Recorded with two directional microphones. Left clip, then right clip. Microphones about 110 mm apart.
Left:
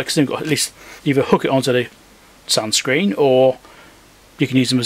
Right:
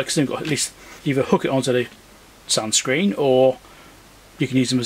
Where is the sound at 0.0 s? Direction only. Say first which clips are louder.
Left 3 dB; 35° left (ahead or behind).